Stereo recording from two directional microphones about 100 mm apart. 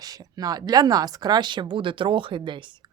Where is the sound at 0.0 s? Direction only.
40° right (ahead or behind).